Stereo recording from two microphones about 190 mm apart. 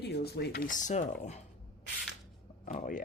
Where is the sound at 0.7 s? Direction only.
40° left (ahead or behind).